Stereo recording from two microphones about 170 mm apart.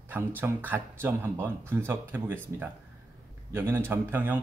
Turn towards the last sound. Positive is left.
turn(degrees=-10)  # may be behind; listen again after turning